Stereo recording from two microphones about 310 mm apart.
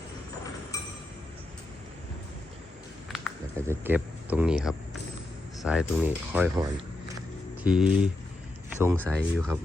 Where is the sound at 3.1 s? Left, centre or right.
Centre.